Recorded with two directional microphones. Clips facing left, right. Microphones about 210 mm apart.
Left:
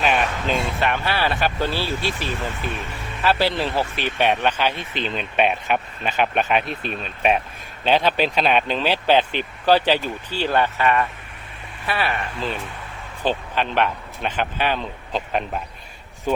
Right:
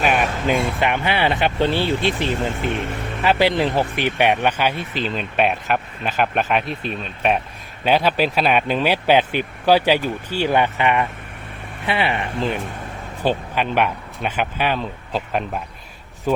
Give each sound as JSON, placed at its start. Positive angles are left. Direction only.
{"t": 0.0, "sound": "speech", "side_deg": -5}